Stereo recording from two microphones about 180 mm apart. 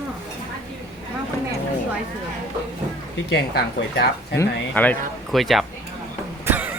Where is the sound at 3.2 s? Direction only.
70° left (ahead or behind).